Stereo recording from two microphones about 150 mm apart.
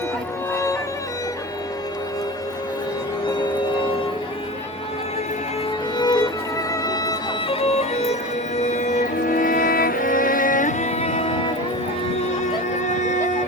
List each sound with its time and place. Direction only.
0.5 s music: 20° left (ahead or behind)
6.0 s music: 25° left (ahead or behind)
7.4 s music: 40° left (ahead or behind)
9.1 s music: 65° left (ahead or behind)